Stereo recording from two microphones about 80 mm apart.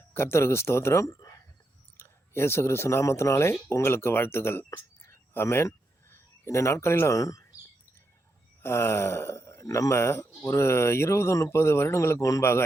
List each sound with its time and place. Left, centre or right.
0.1 s speech: left
2.0 s speech: left
7.2 s speech: left
8.6 s a sound: left
9.6 s speech: left